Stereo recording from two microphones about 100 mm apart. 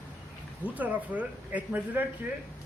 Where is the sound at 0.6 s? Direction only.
15° right (ahead or behind).